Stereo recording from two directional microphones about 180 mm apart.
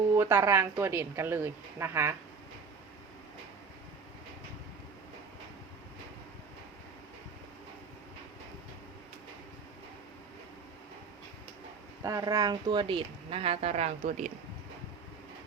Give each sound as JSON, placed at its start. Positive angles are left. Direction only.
{"t": 0.1, "sound": "speech", "side_deg": -10}
{"t": 12.0, "sound": "speech", "side_deg": -20}